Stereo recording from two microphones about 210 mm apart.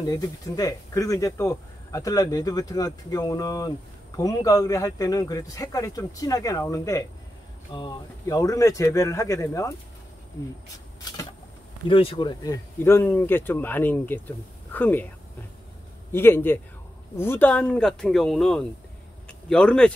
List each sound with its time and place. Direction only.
0.1 s speech: 15° left (ahead or behind)
11.9 s speech: 25° left (ahead or behind)
12.7 s speech: 10° left (ahead or behind)
16.1 s speech: 10° left (ahead or behind)
19.2 s a sound: 5° left (ahead or behind)